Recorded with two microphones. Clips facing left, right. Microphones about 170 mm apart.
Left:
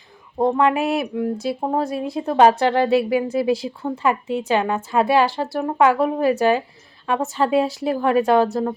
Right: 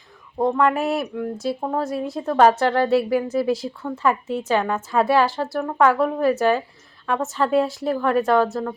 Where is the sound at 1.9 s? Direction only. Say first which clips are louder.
Left 1 dB; 5° left (ahead or behind).